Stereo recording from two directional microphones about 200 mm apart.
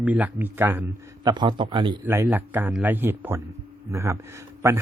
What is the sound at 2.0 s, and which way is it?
Speech, 10° right (ahead or behind).